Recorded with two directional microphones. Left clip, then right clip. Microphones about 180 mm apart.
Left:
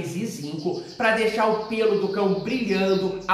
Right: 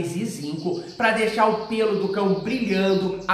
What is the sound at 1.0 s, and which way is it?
A man's voice, 15° right (ahead or behind).